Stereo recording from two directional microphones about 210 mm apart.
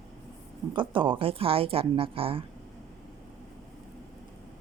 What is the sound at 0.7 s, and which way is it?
Speech, 20° right (ahead or behind).